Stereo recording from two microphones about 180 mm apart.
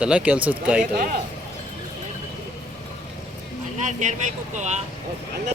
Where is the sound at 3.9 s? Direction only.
40° right (ahead or behind).